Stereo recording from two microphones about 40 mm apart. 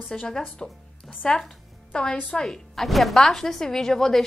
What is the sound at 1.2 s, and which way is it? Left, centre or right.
A woman's voice, centre.